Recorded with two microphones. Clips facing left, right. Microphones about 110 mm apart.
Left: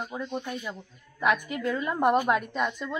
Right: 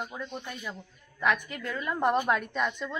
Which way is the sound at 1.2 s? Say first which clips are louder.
Left 3 dB; 15° left (ahead or behind).